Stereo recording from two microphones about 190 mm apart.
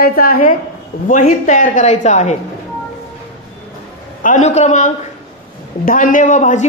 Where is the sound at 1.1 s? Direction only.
35° left (ahead or behind).